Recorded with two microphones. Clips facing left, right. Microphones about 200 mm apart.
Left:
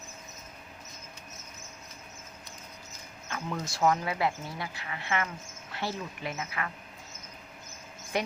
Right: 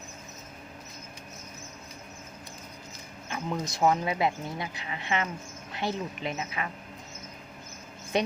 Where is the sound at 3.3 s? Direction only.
20° right (ahead or behind).